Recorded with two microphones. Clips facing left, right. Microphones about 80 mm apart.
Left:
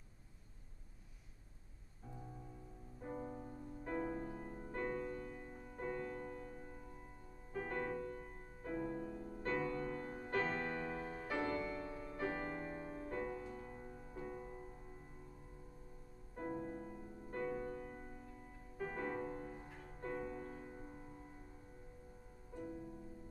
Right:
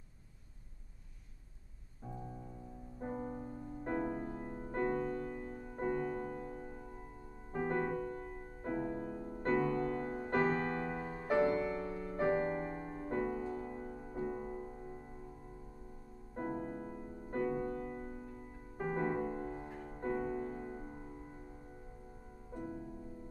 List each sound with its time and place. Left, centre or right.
3.0 s music: right
4.4 s music: right
9.5 s music: right
11.6 s music: right
16.3 s music: right
17.5 s music: centre
20.6 s music: right